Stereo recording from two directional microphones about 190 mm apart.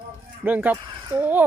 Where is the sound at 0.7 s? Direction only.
25° right (ahead or behind).